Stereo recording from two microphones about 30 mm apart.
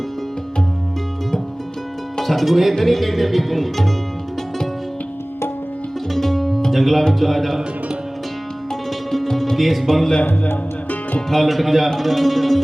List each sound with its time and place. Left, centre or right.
2.2 s music: centre
6.1 s music: centre
6.7 s speech: centre
7.1 s music: centre
9.3 s music: centre
10.4 s music: left
11.3 s music: centre